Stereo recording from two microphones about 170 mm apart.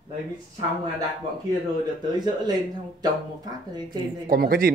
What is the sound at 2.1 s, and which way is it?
Speech, 25° right (ahead or behind).